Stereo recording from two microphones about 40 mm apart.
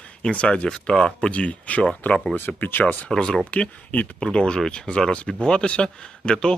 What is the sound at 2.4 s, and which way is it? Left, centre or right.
Speech, left.